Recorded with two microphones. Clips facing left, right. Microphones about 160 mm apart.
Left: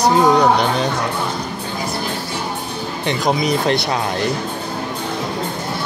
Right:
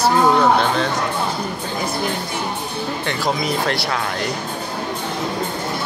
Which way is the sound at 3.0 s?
20° left (ahead or behind).